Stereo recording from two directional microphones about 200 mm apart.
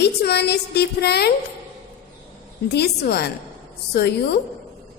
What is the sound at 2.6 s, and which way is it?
A woman's voice, 55° left (ahead or behind).